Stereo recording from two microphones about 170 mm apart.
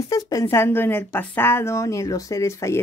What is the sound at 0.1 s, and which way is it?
Speech, 20° left (ahead or behind).